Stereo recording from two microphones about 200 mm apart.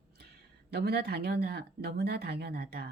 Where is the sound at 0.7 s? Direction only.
55° right (ahead or behind).